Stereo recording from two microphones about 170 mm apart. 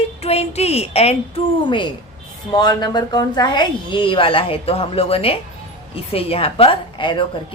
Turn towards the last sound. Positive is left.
turn(degrees=30)  # may be behind; listen again after turning